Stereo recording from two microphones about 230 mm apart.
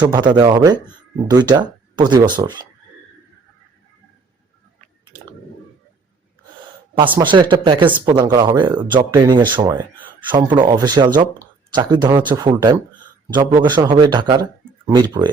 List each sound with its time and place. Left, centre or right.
0.0 s speech: centre
7.2 s speech: right